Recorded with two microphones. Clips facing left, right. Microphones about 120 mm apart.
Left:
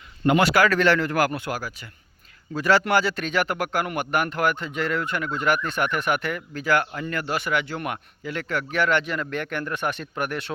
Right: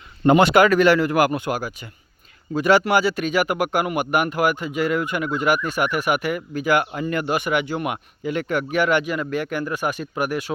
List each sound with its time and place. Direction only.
0.3 s speech: 25° right (ahead or behind); by 10.5 s 10° right (ahead or behind)